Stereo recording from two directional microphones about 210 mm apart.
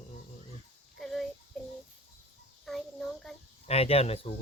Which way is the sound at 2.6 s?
Centre (ahead or behind).